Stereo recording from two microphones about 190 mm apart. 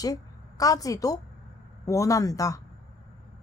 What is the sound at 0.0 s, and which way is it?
A woman's voice, 20° left (ahead or behind).